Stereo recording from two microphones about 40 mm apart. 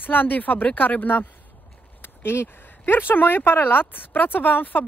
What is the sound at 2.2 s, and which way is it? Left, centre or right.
Speech, left.